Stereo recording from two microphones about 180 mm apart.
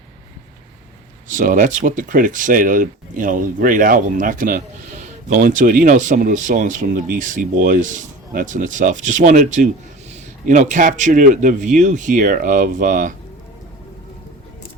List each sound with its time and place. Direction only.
1.3 s speech: 45° right (ahead or behind)